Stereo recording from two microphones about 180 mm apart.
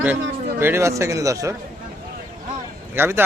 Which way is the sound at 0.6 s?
15° right (ahead or behind).